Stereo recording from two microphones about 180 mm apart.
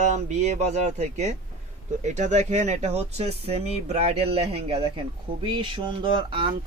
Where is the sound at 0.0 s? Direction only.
40° right (ahead or behind).